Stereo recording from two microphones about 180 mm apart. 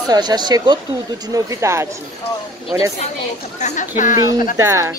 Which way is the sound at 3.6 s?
40° left (ahead or behind).